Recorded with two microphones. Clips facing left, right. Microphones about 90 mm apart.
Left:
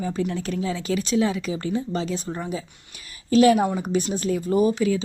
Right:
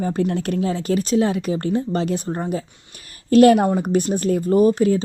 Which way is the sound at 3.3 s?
55° right (ahead or behind).